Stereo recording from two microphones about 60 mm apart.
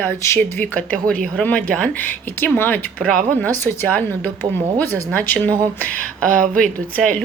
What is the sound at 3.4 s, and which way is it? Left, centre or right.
A woman's voice, left.